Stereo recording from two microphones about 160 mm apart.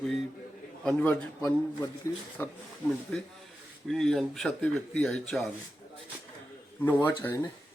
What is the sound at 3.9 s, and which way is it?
Speech, centre (ahead or behind).